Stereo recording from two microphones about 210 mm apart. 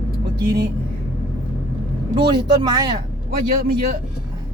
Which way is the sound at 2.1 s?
20° right (ahead or behind).